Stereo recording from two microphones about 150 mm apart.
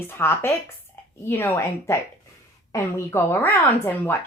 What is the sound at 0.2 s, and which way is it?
A woman's voice, 15° left (ahead or behind).